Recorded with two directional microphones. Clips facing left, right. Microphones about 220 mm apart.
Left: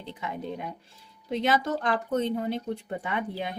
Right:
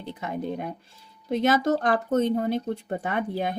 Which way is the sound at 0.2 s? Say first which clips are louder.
Right 4 dB; 45° right (ahead or behind).